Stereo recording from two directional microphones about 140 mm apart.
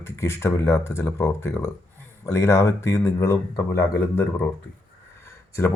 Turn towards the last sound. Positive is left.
turn(degrees=20)  # may be behind; listen again after turning